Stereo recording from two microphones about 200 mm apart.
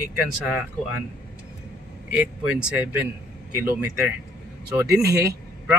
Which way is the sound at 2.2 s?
5° right (ahead or behind).